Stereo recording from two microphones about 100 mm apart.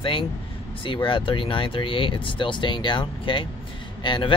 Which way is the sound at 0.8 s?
55° left (ahead or behind).